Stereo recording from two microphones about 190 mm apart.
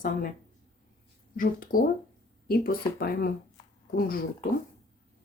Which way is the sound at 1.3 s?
45° left (ahead or behind).